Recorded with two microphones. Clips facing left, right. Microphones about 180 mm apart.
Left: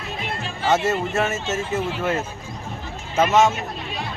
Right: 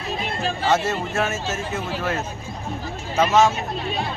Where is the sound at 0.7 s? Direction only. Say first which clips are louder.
Left 3 dB; centre (ahead or behind).